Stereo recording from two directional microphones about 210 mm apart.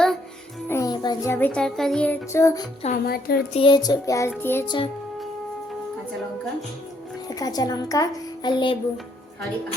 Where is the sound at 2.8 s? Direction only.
40° left (ahead or behind).